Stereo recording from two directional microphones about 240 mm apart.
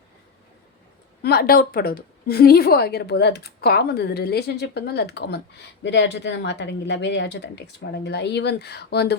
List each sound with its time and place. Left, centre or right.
1.2 s a woman's voice: left